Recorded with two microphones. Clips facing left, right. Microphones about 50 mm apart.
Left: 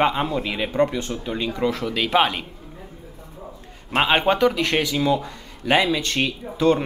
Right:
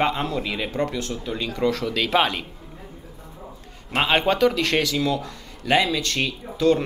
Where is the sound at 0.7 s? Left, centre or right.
Left; by 2.4 s centre.